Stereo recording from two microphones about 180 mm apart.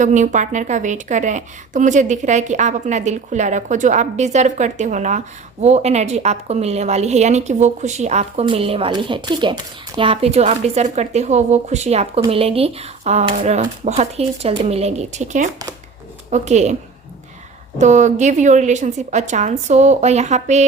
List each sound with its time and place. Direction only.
0.0 s a woman's voice: 45° right (ahead or behind)
17.7 s a woman's voice: 40° right (ahead or behind)